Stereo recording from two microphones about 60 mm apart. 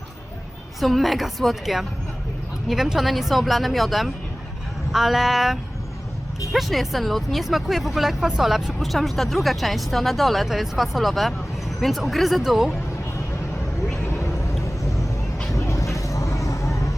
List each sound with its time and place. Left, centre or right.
0.8 s speech: centre
15.5 s vehicle: left